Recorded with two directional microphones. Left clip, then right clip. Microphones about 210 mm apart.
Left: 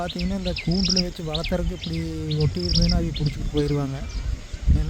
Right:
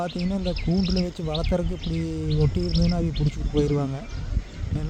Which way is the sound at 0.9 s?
Centre (ahead or behind).